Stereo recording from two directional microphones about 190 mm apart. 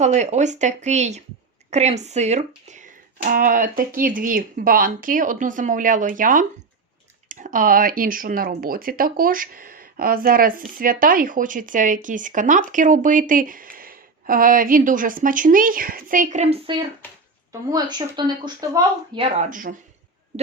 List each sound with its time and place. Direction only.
0.0 s speech: 35° right (ahead or behind)
3.2 s speech: 50° right (ahead or behind)
17.7 s speech: 20° right (ahead or behind)
19.5 s speech: 45° right (ahead or behind)